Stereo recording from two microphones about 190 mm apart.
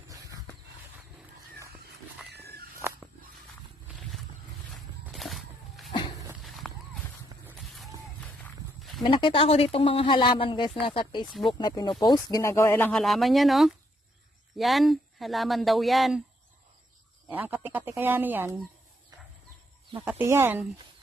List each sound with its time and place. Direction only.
0.1 s a sound: 15° right (ahead or behind)
2.2 s walk: 60° right (ahead or behind)
4.7 s a sound: centre (ahead or behind)
6.6 s horse: 5° left (ahead or behind)
7.5 s music: centre (ahead or behind)
8.8 s a sound: centre (ahead or behind)
9.0 s speech: 25° left (ahead or behind)
11.3 s speech: centre (ahead or behind)
11.5 s speech: 20° left (ahead or behind); by 16.2 s centre (ahead or behind)
17.2 s speech: 10° right (ahead or behind)
20.1 s speech: 10° right (ahead or behind)